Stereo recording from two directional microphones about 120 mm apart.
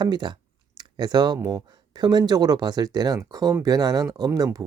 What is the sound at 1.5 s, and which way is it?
Speech, 35° right (ahead or behind).